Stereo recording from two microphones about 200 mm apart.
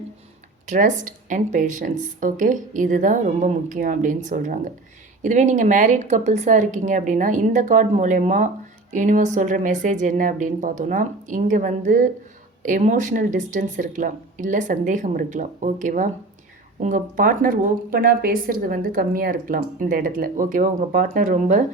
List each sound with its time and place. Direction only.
0.7 s a woman's voice: 40° right (ahead or behind)